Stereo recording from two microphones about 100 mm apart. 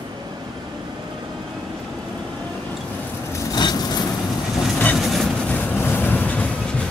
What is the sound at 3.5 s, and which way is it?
Vehicle, 45° left (ahead or behind).